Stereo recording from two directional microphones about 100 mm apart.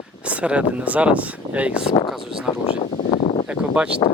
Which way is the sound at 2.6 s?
70° left (ahead or behind).